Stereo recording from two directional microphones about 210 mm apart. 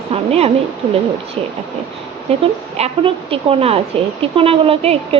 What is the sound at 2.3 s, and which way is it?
A woman's voice, 30° right (ahead or behind).